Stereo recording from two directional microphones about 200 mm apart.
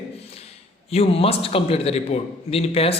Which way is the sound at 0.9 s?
30° left (ahead or behind).